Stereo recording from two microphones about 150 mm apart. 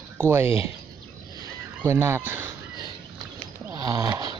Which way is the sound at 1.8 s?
15° right (ahead or behind).